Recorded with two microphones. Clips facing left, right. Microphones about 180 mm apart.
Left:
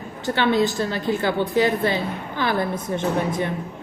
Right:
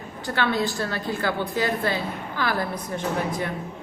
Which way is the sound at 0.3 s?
20° left (ahead or behind).